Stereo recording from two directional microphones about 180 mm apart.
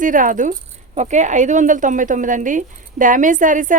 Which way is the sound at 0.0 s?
50° right (ahead or behind).